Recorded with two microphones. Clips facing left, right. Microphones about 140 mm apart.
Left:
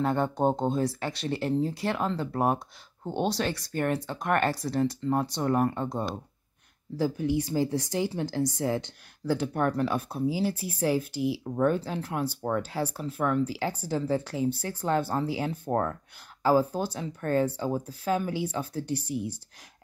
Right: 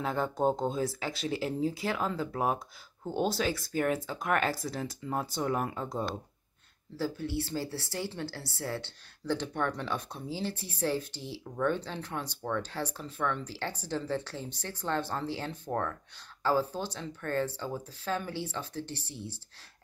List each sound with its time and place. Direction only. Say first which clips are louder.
0.0 s speech: left 4 dB; centre (ahead or behind)
7.0 s a woman's voice: left 6 dB; 15° left (ahead or behind)